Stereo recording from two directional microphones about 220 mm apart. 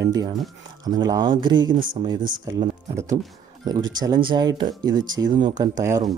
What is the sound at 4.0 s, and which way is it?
Speech, 20° right (ahead or behind).